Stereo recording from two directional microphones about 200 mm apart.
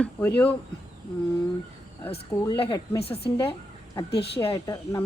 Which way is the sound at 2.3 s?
20° left (ahead or behind).